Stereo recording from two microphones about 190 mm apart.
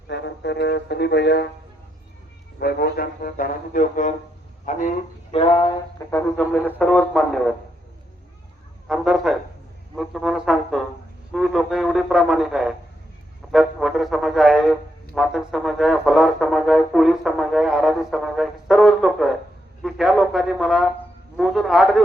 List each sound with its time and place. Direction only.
0.1 s speech: 65° left (ahead or behind)
2.6 s speech: 55° left (ahead or behind)
5.3 s a sound: 30° left (ahead or behind)
6.1 s speech: 10° left (ahead or behind)
8.9 s speech: centre (ahead or behind)